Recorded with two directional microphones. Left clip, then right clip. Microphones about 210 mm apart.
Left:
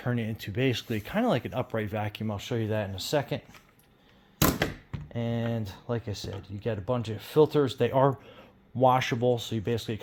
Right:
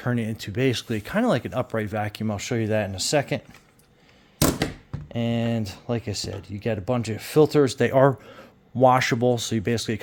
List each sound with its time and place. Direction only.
0.0 s speech: 30° right (ahead or behind)
5.1 s speech: 50° right (ahead or behind)